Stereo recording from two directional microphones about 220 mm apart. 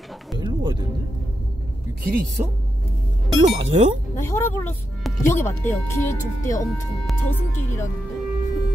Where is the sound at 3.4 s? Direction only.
30° right (ahead or behind).